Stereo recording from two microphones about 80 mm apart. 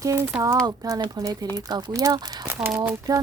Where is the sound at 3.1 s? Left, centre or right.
Right.